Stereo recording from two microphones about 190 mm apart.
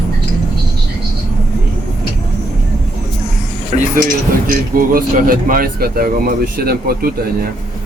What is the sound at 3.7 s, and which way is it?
Speech, 45° right (ahead or behind).